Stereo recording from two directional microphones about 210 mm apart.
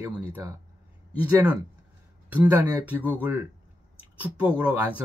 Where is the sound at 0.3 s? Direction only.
15° right (ahead or behind).